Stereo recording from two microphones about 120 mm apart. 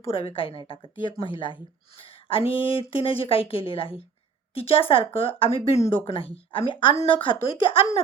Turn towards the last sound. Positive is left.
turn(degrees=50)  # may be behind; listen again after turning